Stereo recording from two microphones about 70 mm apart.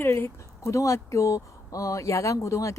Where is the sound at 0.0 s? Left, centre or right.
Left.